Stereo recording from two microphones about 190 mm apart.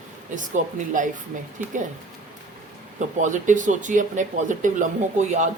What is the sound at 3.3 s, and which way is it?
Speech, 40° right (ahead or behind).